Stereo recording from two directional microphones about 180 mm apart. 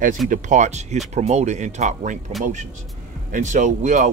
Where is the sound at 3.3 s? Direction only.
45° right (ahead or behind).